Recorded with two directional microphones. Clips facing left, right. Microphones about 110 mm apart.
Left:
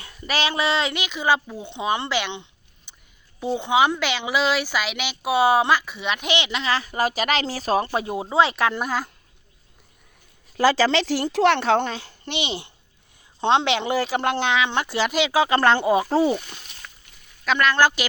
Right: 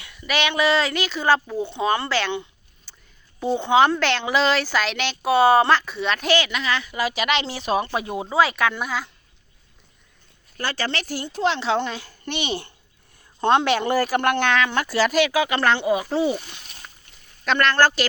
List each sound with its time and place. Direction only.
0.0 s a woman's voice: 35° left (ahead or behind)
8.3 s speech: 25° left (ahead or behind)
10.8 s speech: 90° left; by 11.7 s 65° left (ahead or behind)
11.9 s a child's voice: 30° left (ahead or behind)
12.3 s speech: 20° left (ahead or behind)
13.7 s speech: 45° right (ahead or behind)
14.3 s speech: 20° left (ahead or behind)
15.3 s speech: 30° left (ahead or behind)
17.4 s a woman's voice: 5° left (ahead or behind)